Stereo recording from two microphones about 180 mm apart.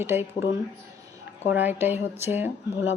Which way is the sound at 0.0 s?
15° right (ahead or behind).